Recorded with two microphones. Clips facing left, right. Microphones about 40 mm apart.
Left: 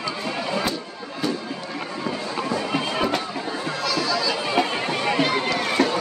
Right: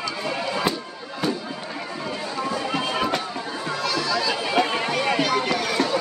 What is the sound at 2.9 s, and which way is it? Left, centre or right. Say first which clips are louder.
Music: left 1 dB; centre.